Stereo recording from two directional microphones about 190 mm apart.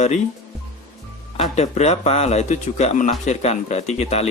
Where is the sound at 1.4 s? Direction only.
35° left (ahead or behind).